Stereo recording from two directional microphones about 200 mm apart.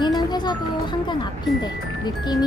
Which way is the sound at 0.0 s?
20° left (ahead or behind).